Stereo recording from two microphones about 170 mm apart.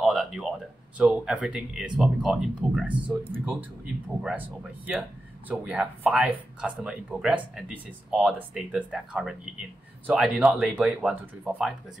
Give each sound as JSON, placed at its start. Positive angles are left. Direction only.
{"t": 0.0, "sound": "a sound", "side_deg": 0}
{"t": 0.9, "sound": "speech", "side_deg": -5}
{"t": 4.2, "sound": "speech", "side_deg": -5}